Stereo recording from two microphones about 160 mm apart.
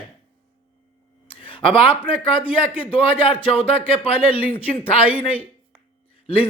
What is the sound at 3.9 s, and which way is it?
Speech, 35° left (ahead or behind).